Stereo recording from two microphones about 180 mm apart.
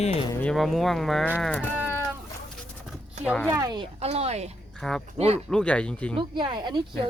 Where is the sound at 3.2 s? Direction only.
Centre (ahead or behind).